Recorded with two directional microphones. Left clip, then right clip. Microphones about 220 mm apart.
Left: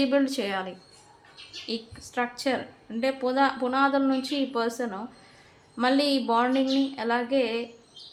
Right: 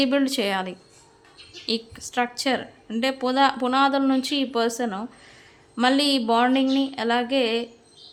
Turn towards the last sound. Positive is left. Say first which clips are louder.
# right 3 dB
turn(degrees=-35)  # may be behind; listen again after turning